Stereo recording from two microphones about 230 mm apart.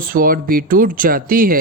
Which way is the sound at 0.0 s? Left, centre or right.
Right.